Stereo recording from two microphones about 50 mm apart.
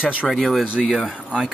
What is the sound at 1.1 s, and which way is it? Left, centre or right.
Speech, centre.